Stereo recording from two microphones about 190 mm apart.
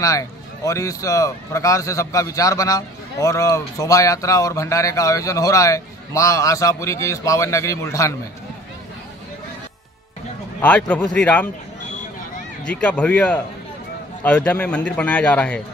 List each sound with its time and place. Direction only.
0.0 s a man's voice: 15° left (ahead or behind)
10.6 s a man's voice: 5° left (ahead or behind)
12.6 s a man's voice: 5° left (ahead or behind)